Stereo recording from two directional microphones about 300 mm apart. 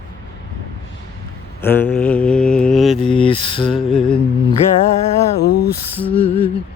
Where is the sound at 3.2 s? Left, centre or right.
Centre.